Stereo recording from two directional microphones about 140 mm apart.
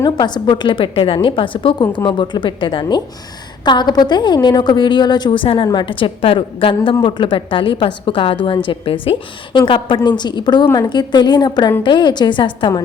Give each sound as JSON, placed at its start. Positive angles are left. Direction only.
{"t": 0.0, "sound": "a woman's voice", "side_deg": 30}